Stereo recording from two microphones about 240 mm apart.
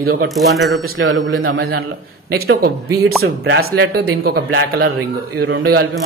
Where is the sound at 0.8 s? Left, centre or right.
Right.